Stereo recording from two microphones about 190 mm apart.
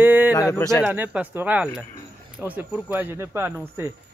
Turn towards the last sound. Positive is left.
turn(degrees=-10)  # may be behind; listen again after turning